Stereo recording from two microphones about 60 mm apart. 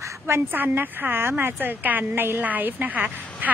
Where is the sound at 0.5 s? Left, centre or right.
Right.